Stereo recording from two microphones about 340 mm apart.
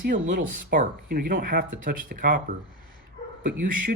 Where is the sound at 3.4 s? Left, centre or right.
Right.